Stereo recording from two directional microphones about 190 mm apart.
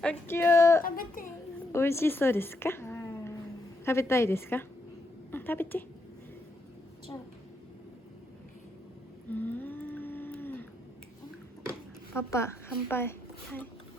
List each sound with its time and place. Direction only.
0.0 s speech: 10° left (ahead or behind)
0.8 s speech: 45° left (ahead or behind)
1.7 s a woman's voice: 15° left (ahead or behind)
9.3 s a sound: 10° left (ahead or behind)
12.1 s a woman's voice: 15° left (ahead or behind)